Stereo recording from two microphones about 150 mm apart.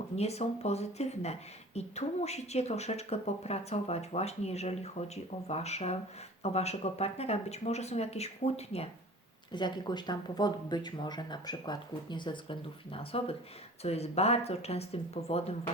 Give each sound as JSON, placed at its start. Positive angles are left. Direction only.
{"t": 0.2, "sound": "speech", "side_deg": 45}
{"t": 9.5, "sound": "speech", "side_deg": 30}